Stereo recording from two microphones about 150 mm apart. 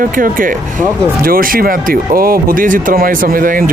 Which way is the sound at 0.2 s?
70° right (ahead or behind).